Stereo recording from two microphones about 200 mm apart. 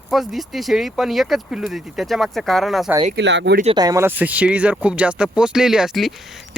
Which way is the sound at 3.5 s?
30° right (ahead or behind).